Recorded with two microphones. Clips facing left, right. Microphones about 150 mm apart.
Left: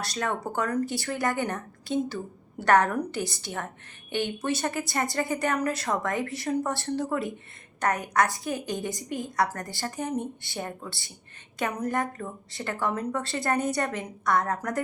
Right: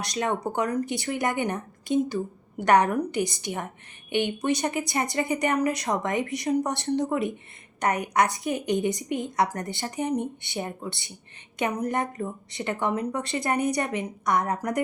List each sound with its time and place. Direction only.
0.0 s a woman's voice: 20° right (ahead or behind)